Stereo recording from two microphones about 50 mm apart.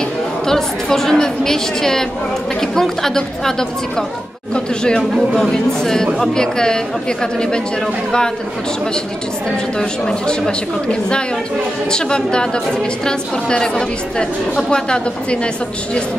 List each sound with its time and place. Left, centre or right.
0.5 s a woman's voice: centre
5.3 s speech: centre
9.8 s a woman's voice: centre